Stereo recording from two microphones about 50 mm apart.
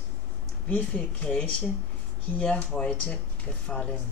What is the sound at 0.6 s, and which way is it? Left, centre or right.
Speech, left.